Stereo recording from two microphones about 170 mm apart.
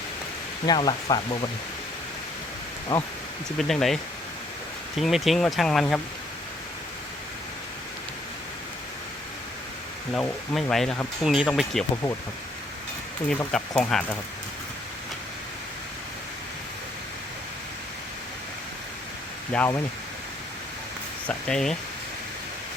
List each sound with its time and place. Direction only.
0.6 s speech: 25° left (ahead or behind)
2.9 s speech: 20° left (ahead or behind)
3.6 s speech: centre (ahead or behind)
10.1 s speech: 5° left (ahead or behind)
13.3 s speech: 5° left (ahead or behind)
19.5 s speech: 10° left (ahead or behind)
21.2 s speech: 5° left (ahead or behind)